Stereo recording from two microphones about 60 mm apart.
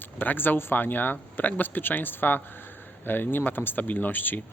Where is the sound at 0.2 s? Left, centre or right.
Left.